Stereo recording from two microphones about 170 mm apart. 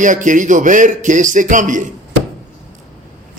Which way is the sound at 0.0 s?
50° right (ahead or behind).